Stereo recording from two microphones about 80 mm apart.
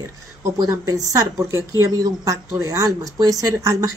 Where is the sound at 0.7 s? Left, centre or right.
Right.